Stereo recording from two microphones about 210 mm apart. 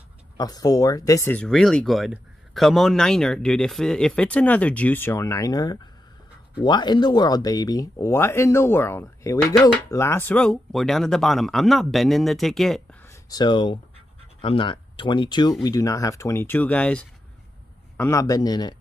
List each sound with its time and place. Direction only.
0.4 s speech: 15° left (ahead or behind); by 13.1 s centre (ahead or behind)
13.1 s speech: 20° left (ahead or behind)